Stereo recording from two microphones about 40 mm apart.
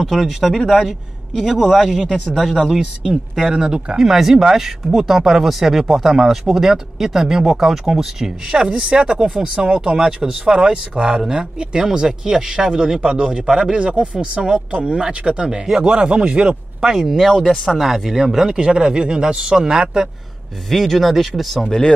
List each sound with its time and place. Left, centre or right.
0.0 s speech: centre
2.0 s speech: centre
2.6 s speech: centre
8.6 s speech: right
15.5 s speech: centre
16.8 s speech: centre
18.5 s speech: right
20.7 s speech: centre